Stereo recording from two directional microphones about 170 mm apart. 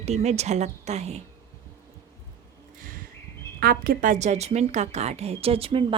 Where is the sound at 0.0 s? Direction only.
40° right (ahead or behind).